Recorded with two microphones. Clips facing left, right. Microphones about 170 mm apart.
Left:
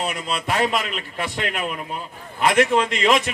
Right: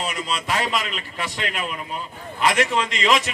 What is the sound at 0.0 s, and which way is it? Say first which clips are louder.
A man's voice: left 1 dB; 55° left (ahead or behind).